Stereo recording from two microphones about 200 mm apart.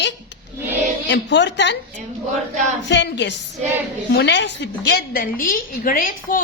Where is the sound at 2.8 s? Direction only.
60° left (ahead or behind).